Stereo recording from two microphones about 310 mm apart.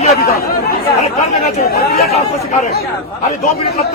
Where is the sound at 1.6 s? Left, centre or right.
Left.